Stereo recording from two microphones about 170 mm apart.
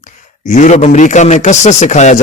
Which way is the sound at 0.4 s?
45° left (ahead or behind).